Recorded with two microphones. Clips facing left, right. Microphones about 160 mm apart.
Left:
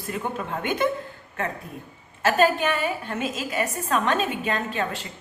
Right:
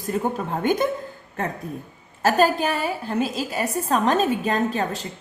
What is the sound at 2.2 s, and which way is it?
A woman's voice, 35° right (ahead or behind).